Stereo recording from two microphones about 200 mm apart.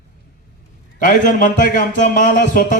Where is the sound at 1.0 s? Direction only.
40° left (ahead or behind).